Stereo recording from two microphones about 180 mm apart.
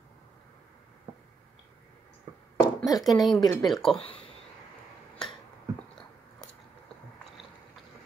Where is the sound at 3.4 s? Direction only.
25° left (ahead or behind).